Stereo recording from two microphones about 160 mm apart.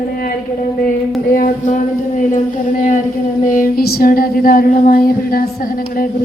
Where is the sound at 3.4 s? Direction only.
60° left (ahead or behind).